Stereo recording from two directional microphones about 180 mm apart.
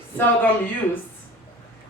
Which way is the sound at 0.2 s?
10° left (ahead or behind).